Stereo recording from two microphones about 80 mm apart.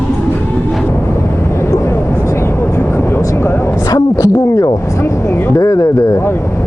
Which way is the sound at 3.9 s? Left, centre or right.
Left.